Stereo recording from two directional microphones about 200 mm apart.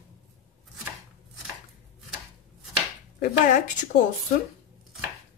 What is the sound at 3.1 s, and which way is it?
Speech, 40° left (ahead or behind).